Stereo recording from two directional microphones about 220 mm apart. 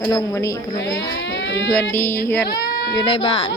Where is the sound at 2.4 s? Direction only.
45° left (ahead or behind).